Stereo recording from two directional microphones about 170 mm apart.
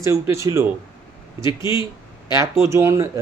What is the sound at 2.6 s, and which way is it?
Speech, 15° right (ahead or behind).